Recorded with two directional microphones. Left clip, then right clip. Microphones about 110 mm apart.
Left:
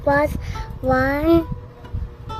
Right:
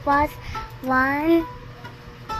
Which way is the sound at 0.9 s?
60° left (ahead or behind).